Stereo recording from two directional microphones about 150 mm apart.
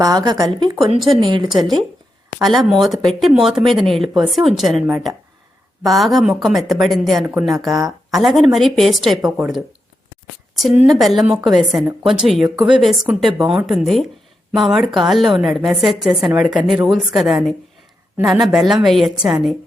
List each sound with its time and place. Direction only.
0.0 s speech: 25° right (ahead or behind)
1.5 s speech: centre (ahead or behind)
7.7 s speech: 25° right (ahead or behind)
8.1 s speech: centre (ahead or behind)
10.5 s a woman's voice: centre (ahead or behind)